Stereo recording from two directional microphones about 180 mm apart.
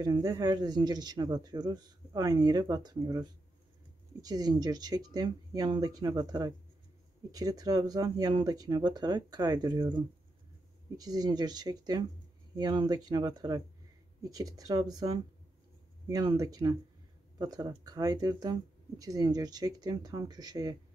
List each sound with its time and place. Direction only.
0.0 s speech: 20° right (ahead or behind)